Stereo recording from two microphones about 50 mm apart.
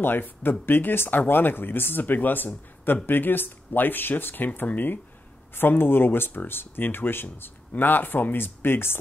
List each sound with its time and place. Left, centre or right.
0.0 s speech: left